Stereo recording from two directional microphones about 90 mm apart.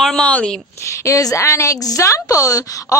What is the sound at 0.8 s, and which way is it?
A woman's voice, 35° left (ahead or behind).